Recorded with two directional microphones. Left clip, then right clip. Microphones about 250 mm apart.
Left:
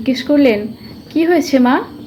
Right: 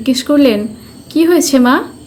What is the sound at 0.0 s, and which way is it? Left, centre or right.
A woman's voice, centre.